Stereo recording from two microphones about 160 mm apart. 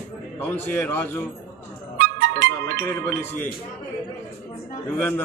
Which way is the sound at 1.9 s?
65° right (ahead or behind).